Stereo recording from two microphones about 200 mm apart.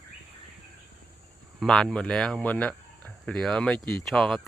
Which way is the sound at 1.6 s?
Centre (ahead or behind).